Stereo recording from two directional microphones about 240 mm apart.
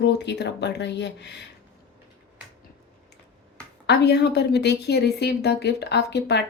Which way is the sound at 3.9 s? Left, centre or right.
Left.